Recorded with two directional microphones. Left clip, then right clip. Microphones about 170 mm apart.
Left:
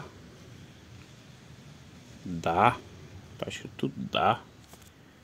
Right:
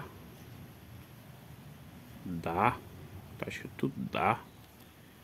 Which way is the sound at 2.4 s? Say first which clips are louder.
Left 6 dB; 20° left (ahead or behind).